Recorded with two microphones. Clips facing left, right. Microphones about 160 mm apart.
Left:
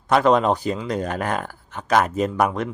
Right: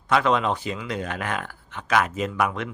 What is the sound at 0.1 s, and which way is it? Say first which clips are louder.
Speech: left 5 dB; 40° left (ahead or behind).